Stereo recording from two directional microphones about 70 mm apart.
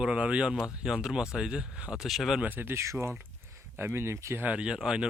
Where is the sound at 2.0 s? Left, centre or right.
Centre.